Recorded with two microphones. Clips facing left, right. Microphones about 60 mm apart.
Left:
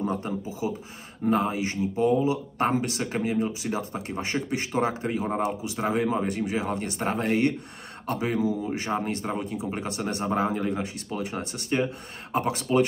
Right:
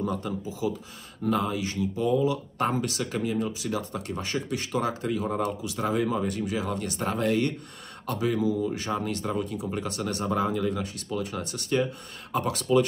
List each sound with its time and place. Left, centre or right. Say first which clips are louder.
0.0 s speech: left 1 dB; left